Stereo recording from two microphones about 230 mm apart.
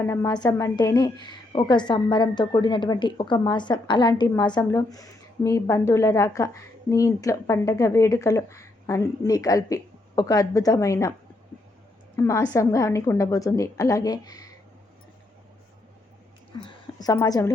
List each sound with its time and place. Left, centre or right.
0.0 s a woman's voice: centre
12.1 s a woman's voice: centre
16.6 s a woman's voice: centre